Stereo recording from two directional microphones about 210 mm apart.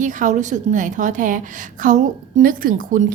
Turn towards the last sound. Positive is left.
turn(degrees=-40)  # may be behind; listen again after turning